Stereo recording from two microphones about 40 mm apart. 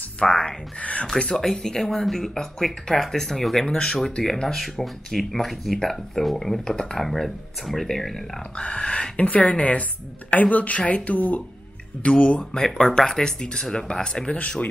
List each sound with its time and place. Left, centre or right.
0.2 s speech: left
0.7 s speech: left
1.2 s speech: centre
3.6 s speech: left
4.2 s speech: centre
4.6 s speech: centre
8.5 s speech: left
9.2 s speech: left
12.0 s speech: left
14.2 s speech: left